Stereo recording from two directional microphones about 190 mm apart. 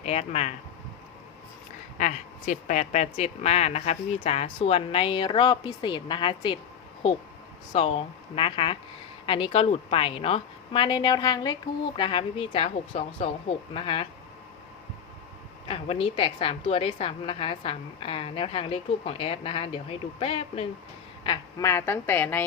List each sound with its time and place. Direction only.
0.0 s speech: 35° left (ahead or behind)
2.0 s speech: 40° left (ahead or behind); by 6.6 s 25° left (ahead or behind)
7.7 s a woman's voice: 30° left (ahead or behind)
15.6 s a woman's voice: 30° left (ahead or behind)
21.2 s a woman's voice: 15° left (ahead or behind)